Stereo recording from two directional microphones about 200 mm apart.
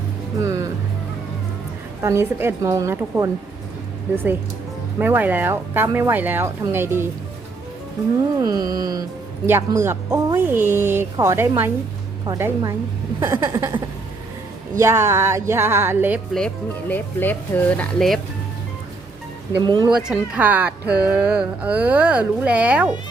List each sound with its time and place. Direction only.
0.4 s music: 15° right (ahead or behind)
2.0 s speech: 15° right (ahead or behind)
8.4 s music: 20° right (ahead or behind)
9.5 s speech: 10° right (ahead or behind)
14.8 s speech: 15° right (ahead or behind)
16.9 s speech: 10° left (ahead or behind)
19.6 s music: 20° right (ahead or behind)
19.9 s speech: 5° right (ahead or behind)